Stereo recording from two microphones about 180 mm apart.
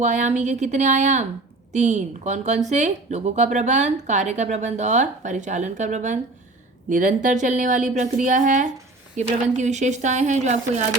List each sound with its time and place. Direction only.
0.0 s a woman's voice: 40° right (ahead or behind)